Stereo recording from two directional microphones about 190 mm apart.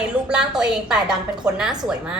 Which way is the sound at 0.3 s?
5° right (ahead or behind).